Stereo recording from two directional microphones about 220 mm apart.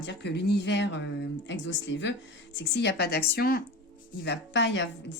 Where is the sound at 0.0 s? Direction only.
50° left (ahead or behind).